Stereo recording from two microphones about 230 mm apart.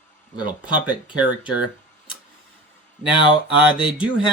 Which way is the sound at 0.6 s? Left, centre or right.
Centre.